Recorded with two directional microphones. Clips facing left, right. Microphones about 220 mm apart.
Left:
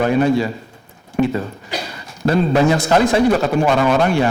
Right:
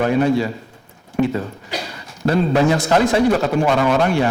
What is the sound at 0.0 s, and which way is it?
A man's voice, 15° left (ahead or behind).